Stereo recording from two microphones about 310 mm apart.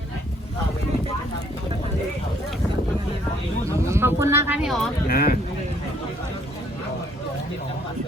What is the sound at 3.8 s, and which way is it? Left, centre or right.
Speech, centre.